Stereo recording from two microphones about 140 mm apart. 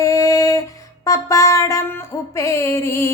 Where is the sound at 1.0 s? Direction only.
25° left (ahead or behind).